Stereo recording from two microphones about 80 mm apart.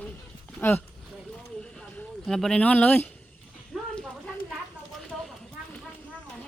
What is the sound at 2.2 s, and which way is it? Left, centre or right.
Speech, centre.